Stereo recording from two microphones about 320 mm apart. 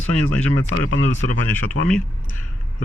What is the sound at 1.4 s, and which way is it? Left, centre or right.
Speech, centre.